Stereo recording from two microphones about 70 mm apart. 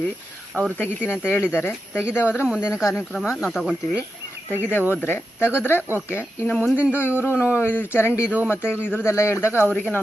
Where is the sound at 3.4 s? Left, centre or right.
Centre.